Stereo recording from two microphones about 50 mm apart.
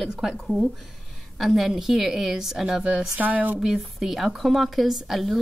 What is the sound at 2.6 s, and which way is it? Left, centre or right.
Speech, centre.